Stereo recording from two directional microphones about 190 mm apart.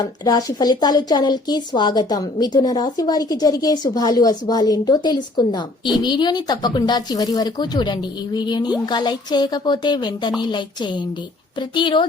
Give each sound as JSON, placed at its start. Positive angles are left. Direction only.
{"t": 0.0, "sound": "speech", "side_deg": 20}